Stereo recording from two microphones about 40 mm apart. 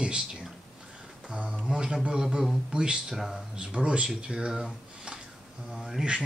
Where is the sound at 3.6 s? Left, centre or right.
Right.